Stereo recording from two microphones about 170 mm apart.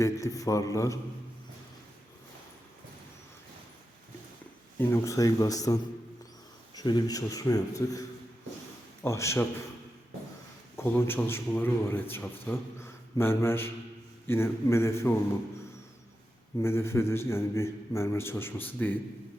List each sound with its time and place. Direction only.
0.0 s a man's voice: 20° left (ahead or behind)
4.8 s a man's voice: 15° left (ahead or behind)
9.0 s a man's voice: 15° left (ahead or behind)
10.8 s a man's voice: 15° left (ahead or behind)
16.6 s a man's voice: 15° left (ahead or behind)